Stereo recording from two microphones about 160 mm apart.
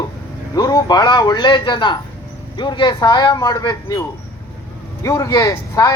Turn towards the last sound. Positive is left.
turn(degrees=20)  # may be behind; listen again after turning